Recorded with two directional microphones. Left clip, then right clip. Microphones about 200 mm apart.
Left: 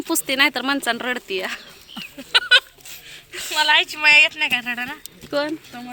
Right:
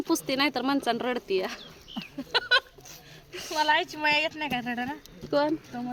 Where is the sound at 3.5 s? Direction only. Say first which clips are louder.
Left 8 dB; 30° right (ahead or behind).